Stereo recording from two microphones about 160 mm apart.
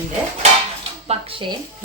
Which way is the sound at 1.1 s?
35° right (ahead or behind).